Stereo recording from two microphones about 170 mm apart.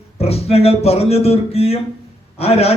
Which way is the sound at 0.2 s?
35° left (ahead or behind).